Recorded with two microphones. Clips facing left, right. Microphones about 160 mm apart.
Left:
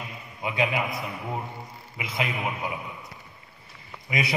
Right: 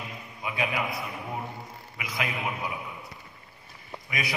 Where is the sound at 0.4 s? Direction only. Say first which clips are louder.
Left 4 dB; 20° left (ahead or behind).